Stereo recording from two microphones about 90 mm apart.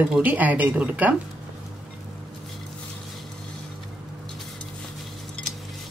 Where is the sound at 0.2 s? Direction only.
20° right (ahead or behind).